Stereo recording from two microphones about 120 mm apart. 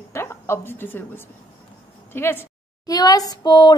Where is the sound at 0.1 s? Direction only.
20° left (ahead or behind).